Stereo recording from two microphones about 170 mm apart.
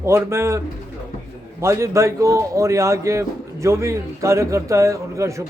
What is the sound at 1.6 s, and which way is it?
A man's voice, 15° right (ahead or behind).